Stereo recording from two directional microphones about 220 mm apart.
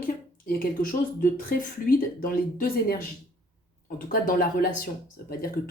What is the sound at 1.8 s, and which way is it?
Speech, 40° left (ahead or behind).